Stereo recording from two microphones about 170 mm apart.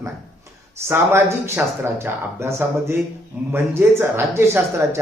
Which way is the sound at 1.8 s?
15° right (ahead or behind).